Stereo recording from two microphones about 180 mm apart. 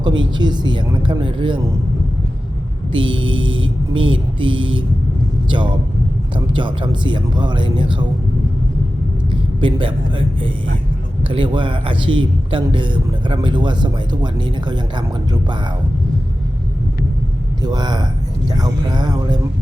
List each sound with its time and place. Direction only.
0.2 s speech: 25° right (ahead or behind)
2.9 s music: 30° right (ahead or behind)
4.4 s speech: 30° right (ahead or behind)
9.6 s speech: 30° right (ahead or behind)
17.6 s speech: 25° right (ahead or behind)